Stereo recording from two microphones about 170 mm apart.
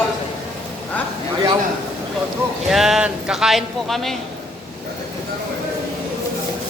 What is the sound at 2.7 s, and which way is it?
A man's voice, centre (ahead or behind).